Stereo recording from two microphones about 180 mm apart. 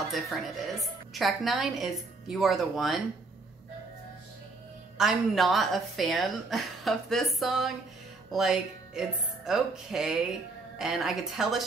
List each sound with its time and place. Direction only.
0.1 s a woman's voice: centre (ahead or behind)
4.9 s a woman's voice: centre (ahead or behind)